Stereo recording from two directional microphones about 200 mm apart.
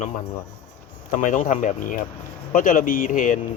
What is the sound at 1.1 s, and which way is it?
Speech, 40° left (ahead or behind).